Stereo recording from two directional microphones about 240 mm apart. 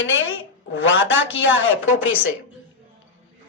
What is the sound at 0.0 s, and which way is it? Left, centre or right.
A woman's voice, left.